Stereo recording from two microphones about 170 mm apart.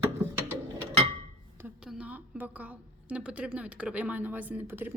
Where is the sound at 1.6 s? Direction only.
5° right (ahead or behind).